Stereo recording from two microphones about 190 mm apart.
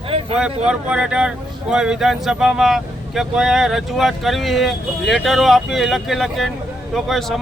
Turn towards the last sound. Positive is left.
turn(degrees=0)  # may be behind; listen again after turning